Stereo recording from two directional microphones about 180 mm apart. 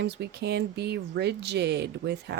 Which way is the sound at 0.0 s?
70° right (ahead or behind).